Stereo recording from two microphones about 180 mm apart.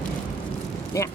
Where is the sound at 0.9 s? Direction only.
15° left (ahead or behind).